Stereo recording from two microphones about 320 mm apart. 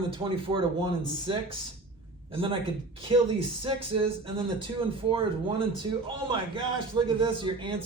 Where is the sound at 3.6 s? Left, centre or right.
Centre.